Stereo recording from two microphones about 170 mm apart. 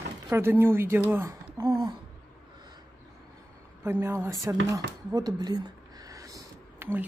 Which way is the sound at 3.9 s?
15° right (ahead or behind).